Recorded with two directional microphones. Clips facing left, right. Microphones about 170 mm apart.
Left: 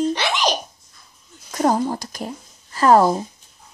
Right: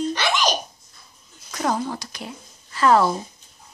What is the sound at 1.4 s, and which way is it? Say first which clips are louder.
Speech: left 5 dB; 40° left (ahead or behind).